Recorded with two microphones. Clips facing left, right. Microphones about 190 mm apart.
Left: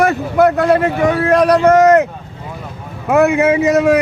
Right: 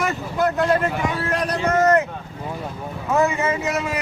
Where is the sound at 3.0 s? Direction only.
65° left (ahead or behind).